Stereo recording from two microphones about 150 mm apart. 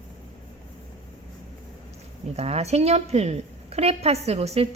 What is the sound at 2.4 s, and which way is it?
Speech, 45° right (ahead or behind).